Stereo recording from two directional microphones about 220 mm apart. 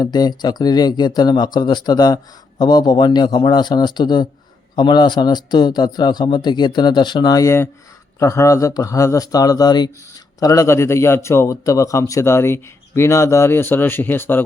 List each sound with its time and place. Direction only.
0.0 s speech: 20° left (ahead or behind)